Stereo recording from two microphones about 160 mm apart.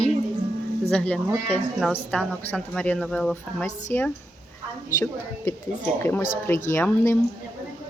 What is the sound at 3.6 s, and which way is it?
Speech, 15° left (ahead or behind).